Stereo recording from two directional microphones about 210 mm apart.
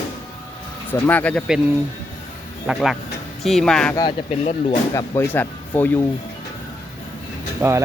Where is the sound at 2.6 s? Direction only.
Centre (ahead or behind).